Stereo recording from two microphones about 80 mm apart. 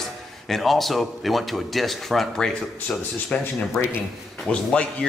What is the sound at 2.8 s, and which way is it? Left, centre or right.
Speech, centre.